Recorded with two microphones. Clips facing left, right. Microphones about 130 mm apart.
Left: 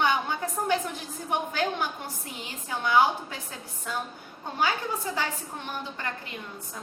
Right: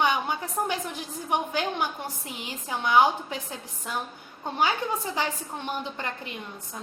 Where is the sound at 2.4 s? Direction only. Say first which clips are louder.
Right 1 dB; 20° right (ahead or behind).